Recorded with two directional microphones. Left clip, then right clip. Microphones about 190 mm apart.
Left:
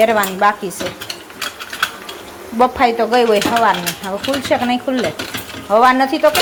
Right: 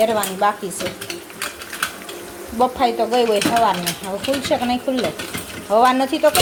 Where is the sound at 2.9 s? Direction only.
5° left (ahead or behind).